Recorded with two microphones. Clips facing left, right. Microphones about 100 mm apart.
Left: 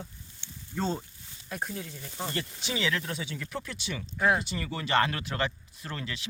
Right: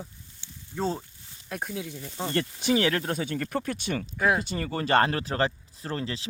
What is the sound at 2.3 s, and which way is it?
Speech, 55° right (ahead or behind).